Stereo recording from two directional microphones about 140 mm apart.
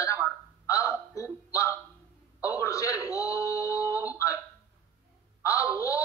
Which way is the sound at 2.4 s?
25° left (ahead or behind).